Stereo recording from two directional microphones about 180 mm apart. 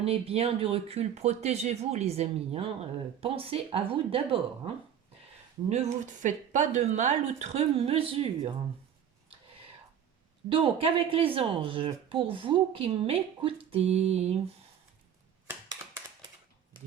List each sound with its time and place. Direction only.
0.0 s speech: 35° right (ahead or behind)
10.5 s speech: 30° right (ahead or behind)